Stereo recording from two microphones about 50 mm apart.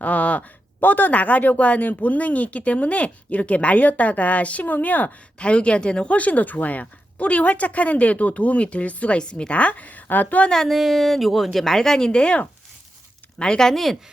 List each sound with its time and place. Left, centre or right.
0.0 s speech: left
10.5 s a woman's voice: centre